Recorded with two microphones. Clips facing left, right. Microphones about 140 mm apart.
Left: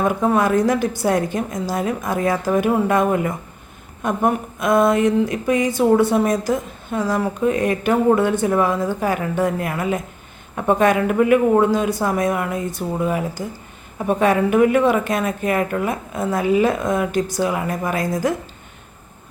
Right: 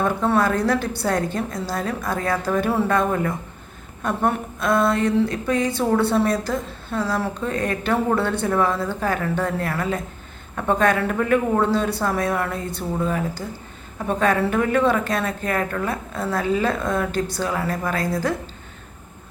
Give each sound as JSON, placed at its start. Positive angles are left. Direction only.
{"t": 0.0, "sound": "a woman's voice", "side_deg": 15}